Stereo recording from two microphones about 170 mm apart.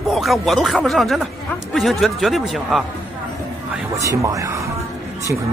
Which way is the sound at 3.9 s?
20° right (ahead or behind).